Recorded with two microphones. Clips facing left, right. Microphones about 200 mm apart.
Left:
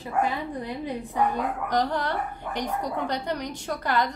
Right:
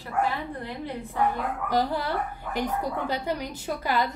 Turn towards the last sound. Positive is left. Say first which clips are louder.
# left 1 dB
turn(degrees=-5)  # may be behind; listen again after turning